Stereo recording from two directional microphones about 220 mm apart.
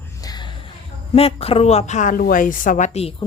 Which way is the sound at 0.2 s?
20° left (ahead or behind).